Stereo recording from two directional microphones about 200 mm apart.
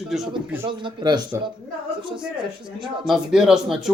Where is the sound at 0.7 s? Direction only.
25° right (ahead or behind).